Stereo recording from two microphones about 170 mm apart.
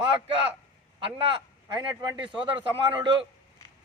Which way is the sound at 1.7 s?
25° right (ahead or behind).